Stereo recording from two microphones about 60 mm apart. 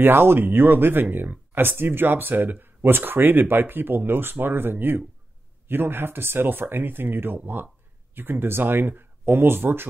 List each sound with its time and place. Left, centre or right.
0.0 s speech: right